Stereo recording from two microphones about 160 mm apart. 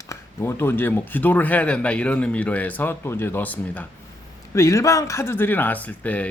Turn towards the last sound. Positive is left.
turn(degrees=10)  # may be behind; listen again after turning